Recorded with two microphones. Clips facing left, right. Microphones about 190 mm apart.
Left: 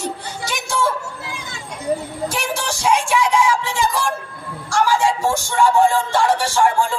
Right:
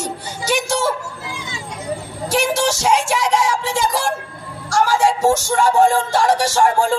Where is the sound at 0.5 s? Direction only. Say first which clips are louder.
Right 3 dB; 75° right (ahead or behind).